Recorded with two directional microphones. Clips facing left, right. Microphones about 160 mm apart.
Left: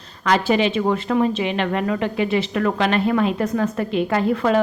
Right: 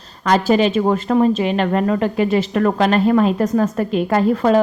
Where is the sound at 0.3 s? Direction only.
40° right (ahead or behind).